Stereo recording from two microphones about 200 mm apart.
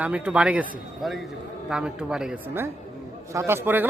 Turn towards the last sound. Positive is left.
turn(degrees=-10)  # may be behind; listen again after turning